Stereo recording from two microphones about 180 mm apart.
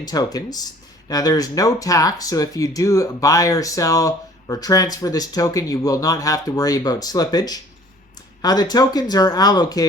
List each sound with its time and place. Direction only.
0.0 s speech: 20° left (ahead or behind)